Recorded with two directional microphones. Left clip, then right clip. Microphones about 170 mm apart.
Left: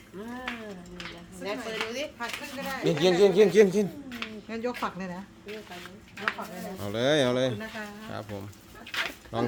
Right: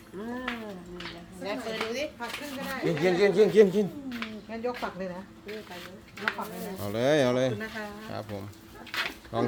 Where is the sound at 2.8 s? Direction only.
20° left (ahead or behind).